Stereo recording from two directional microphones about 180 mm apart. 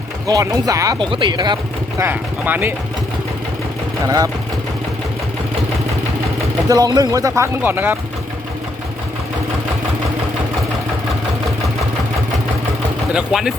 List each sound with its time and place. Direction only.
0.3 s speech: 20° right (ahead or behind)
2.0 s speech: 10° right (ahead or behind)
4.0 s speech: 20° right (ahead or behind)
6.7 s speech: 20° right (ahead or behind)
13.1 s speech: 5° right (ahead or behind)